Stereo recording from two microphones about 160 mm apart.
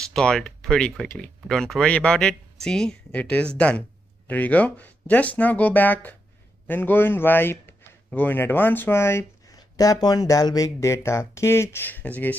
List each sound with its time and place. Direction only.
0.1 s a man's voice: 5° left (ahead or behind)